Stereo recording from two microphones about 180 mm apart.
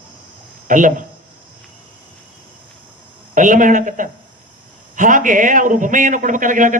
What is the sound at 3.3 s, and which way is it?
A man's voice, 45° right (ahead or behind).